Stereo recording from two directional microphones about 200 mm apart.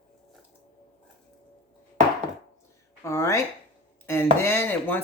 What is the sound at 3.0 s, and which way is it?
Speech, 15° left (ahead or behind).